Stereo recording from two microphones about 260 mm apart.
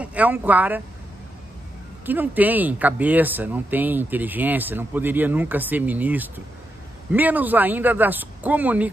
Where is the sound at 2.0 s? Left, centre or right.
Centre.